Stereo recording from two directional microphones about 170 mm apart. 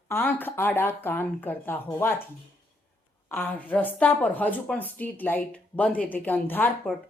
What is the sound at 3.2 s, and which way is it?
Speech, 10° left (ahead or behind).